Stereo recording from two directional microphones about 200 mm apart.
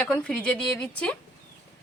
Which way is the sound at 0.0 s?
5° left (ahead or behind).